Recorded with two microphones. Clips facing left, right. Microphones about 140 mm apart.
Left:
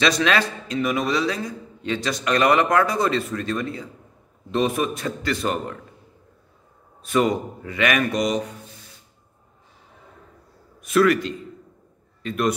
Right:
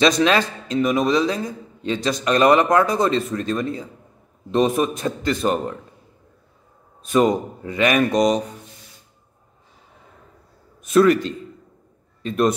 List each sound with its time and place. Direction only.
0.0 s speech: 25° right (ahead or behind)
7.1 s speech: 25° right (ahead or behind)
10.9 s a man's voice: 25° right (ahead or behind)